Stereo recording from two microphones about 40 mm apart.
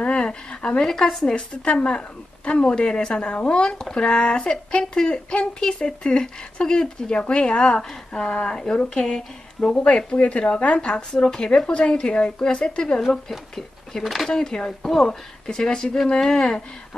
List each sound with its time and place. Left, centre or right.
0.0 s a sound: left
0.8 s speech: centre
1.3 s speech: left
14.0 s speech: centre
14.3 s speech: centre
15.4 s speech: centre